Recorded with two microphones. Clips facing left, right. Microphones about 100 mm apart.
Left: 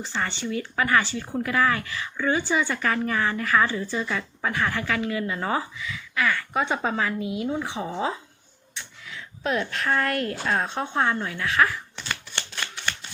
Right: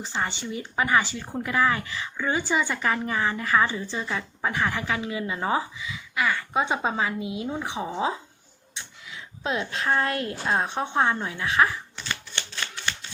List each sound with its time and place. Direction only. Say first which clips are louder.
0.0 s a woman's voice: left 1 dB; 15° right (ahead or behind)